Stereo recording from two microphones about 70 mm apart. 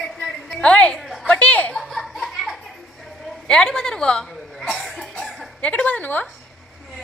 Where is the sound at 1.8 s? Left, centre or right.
Centre.